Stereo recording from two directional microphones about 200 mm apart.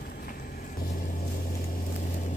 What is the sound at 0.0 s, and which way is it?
Vehicle, 45° left (ahead or behind).